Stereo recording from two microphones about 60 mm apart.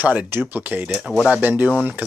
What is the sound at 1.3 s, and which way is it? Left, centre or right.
Speech, right.